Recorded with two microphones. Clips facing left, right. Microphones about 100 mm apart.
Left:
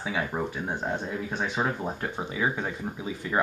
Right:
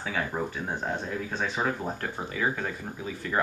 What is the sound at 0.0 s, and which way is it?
Speech, 10° left (ahead or behind).